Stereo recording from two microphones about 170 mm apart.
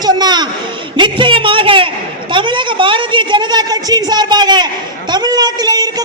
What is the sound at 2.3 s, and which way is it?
A woman's voice, 30° right (ahead or behind).